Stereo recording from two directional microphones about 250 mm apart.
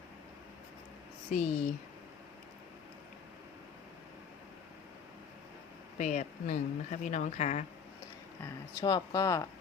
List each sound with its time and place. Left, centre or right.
1.3 s speech: left
6.0 s speech: left
8.8 s speech: centre